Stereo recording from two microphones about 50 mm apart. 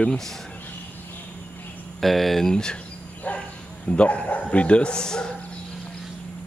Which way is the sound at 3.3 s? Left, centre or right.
Left.